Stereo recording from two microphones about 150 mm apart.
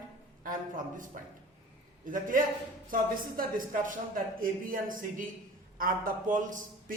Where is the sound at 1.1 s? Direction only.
60° right (ahead or behind).